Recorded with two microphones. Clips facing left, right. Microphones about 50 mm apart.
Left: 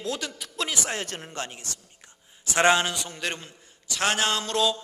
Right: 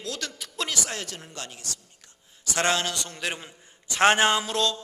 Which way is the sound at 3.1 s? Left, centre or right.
Centre.